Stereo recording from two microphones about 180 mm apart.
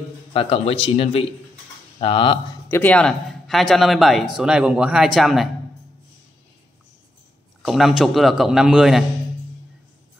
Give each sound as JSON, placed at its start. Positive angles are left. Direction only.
{"t": 0.3, "sound": "speech", "side_deg": 30}
{"t": 2.7, "sound": "speech", "side_deg": 10}
{"t": 7.6, "sound": "speech", "side_deg": 0}